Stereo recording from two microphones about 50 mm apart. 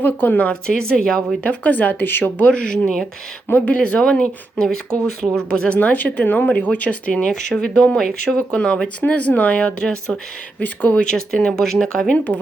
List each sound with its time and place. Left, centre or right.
0.0 s speech: left
0.7 s speech: centre
1.5 s speech: left
2.4 s speech: left
5.7 s speech: left
10.6 s speech: left
11.5 s speech: centre
12.1 s speech: left